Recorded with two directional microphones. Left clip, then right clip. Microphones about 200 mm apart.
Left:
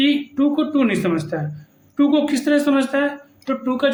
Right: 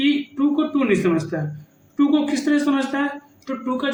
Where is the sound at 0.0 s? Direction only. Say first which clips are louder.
Left 2 dB; 45° left (ahead or behind).